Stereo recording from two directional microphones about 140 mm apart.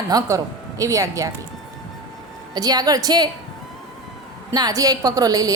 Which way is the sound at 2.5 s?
30° right (ahead or behind).